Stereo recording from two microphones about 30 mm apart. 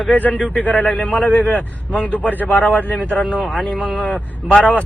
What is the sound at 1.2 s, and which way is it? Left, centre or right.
Speech, left.